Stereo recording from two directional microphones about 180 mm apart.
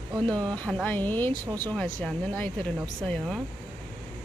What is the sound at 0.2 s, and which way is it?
Speech, 5° left (ahead or behind).